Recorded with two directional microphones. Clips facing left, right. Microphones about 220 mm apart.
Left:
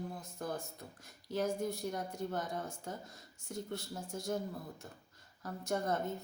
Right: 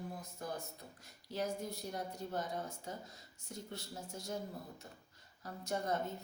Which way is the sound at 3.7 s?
50° left (ahead or behind).